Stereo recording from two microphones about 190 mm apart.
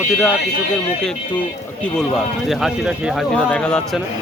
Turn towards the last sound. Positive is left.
turn(degrees=5)  # may be behind; listen again after turning